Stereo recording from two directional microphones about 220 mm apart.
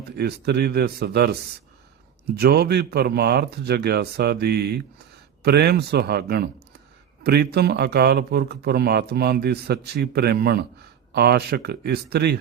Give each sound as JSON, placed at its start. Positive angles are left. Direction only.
{"t": 0.2, "sound": "a man's voice", "side_deg": -45}